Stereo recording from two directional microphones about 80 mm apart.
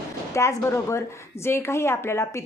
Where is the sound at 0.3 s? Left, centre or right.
Left.